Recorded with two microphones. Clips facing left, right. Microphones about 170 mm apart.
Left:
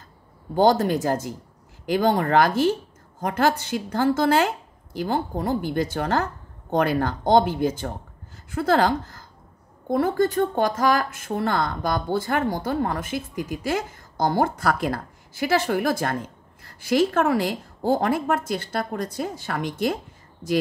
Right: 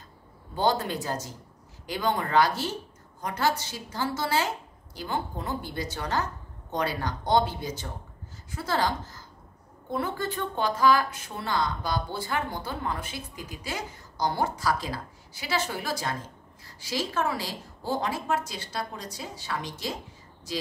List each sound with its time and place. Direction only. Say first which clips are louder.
0.6 s a woman's voice: left 8 dB; 45° left (ahead or behind)
9.8 s a woman's voice: left 9 dB; 45° left (ahead or behind)